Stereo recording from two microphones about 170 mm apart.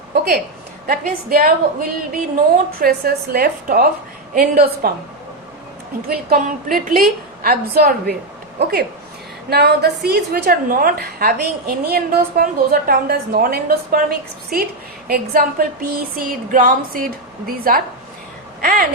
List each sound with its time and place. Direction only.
0.9 s a woman's voice: 60° right (ahead or behind)
6.1 s a woman's voice: 55° right (ahead or behind)
9.5 s a woman's voice: 75° right (ahead or behind); by 18.9 s 55° right (ahead or behind)